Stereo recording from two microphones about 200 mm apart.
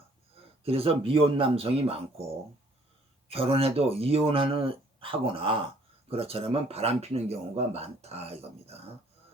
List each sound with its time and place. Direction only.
0.6 s speech: 30° right (ahead or behind)
3.2 s speech: 30° right (ahead or behind)